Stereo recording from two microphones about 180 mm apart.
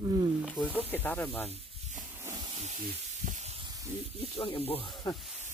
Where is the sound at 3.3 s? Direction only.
40° right (ahead or behind).